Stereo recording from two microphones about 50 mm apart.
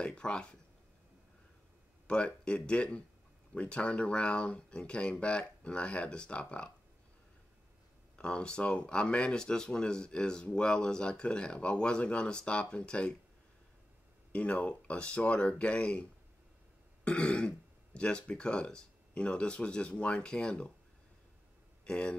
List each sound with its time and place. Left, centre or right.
0.0 s speech: left
2.0 s speech: left
8.2 s speech: centre
14.3 s speech: left
21.8 s speech: centre